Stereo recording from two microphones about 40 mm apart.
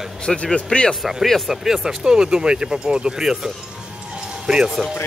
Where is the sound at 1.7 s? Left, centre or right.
Centre.